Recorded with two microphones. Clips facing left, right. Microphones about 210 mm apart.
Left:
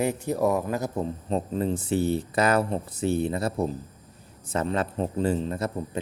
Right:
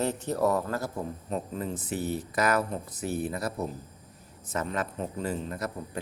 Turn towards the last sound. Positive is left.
turn(degrees=25)  # may be behind; listen again after turning